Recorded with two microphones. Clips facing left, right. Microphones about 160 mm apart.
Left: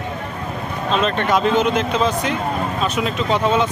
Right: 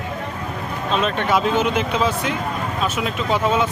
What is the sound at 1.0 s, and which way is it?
Speech, 5° right (ahead or behind).